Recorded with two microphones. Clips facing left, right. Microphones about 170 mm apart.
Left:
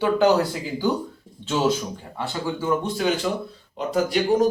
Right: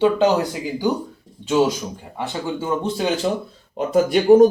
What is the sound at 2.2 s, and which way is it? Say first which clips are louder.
Speech: right 2 dB; 20° right (ahead or behind).